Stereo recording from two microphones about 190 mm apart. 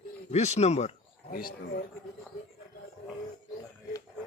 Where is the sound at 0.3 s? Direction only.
35° left (ahead or behind).